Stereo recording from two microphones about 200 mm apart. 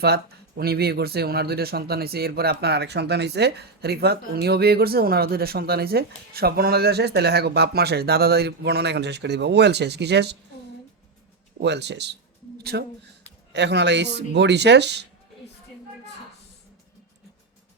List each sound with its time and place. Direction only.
0.0 s speech: 50° right (ahead or behind)
11.6 s speech: 60° right (ahead or behind)
12.5 s a sound: 55° right (ahead or behind)
13.5 s speech: 60° right (ahead or behind)